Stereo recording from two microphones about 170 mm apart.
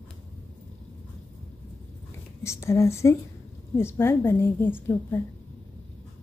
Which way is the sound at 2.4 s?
15° left (ahead or behind).